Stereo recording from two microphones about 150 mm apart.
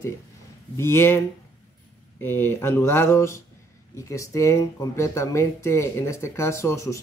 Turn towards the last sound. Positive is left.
turn(degrees=20)  # may be behind; listen again after turning